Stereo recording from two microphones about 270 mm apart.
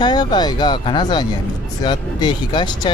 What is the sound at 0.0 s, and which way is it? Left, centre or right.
Speech, centre.